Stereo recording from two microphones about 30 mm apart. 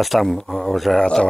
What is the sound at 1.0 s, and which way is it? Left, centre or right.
Speech, centre.